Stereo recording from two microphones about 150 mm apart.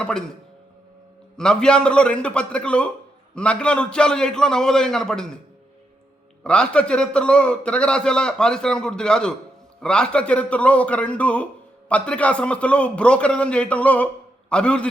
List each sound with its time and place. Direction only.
0.0 s a man's voice: 5° left (ahead or behind)
1.4 s a man's voice: 5° left (ahead or behind)
6.4 s a man's voice: 5° left (ahead or behind)